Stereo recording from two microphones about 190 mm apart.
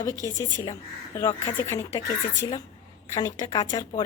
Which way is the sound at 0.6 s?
20° left (ahead or behind).